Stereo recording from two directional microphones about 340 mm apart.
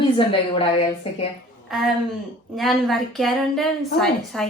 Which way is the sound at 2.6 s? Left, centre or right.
Centre.